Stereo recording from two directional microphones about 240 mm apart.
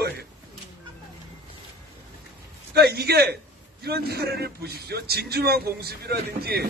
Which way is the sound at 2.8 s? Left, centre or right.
Right.